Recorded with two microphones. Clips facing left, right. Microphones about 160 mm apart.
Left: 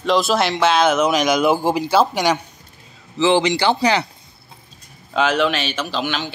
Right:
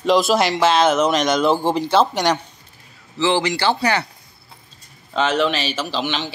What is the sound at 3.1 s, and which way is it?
Speech, 20° left (ahead or behind).